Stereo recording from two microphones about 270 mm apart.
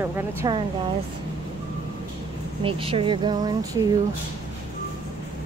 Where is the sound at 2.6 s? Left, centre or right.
Centre.